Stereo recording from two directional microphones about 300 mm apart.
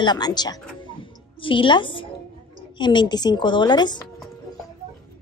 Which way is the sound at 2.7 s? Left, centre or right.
Centre.